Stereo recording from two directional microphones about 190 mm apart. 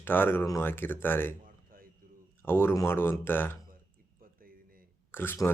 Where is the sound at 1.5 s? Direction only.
50° right (ahead or behind).